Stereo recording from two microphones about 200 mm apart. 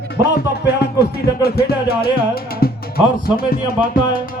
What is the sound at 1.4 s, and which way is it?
Music, 50° left (ahead or behind).